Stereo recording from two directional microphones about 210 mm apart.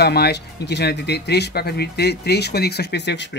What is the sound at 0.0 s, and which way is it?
Speech, 50° left (ahead or behind).